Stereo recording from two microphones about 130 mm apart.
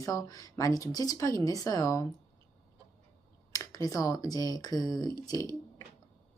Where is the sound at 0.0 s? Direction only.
25° left (ahead or behind).